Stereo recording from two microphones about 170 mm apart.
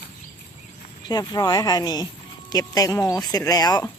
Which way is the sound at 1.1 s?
20° left (ahead or behind).